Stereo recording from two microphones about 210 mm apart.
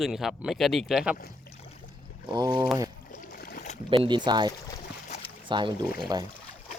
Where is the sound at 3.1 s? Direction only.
45° left (ahead or behind).